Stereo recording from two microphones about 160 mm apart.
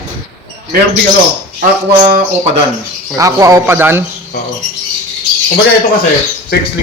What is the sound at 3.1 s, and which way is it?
Speech, 20° right (ahead or behind).